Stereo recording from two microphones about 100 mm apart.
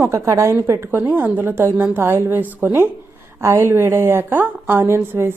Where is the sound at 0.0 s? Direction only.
30° right (ahead or behind).